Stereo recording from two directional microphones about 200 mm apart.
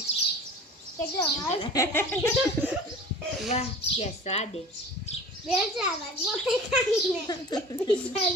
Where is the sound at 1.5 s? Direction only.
20° left (ahead or behind); by 2.7 s 5° left (ahead or behind).